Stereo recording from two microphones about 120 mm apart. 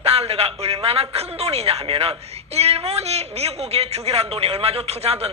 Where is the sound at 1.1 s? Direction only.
55° right (ahead or behind).